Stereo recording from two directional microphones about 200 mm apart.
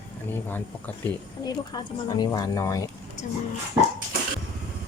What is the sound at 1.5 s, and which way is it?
Speech, 20° left (ahead or behind).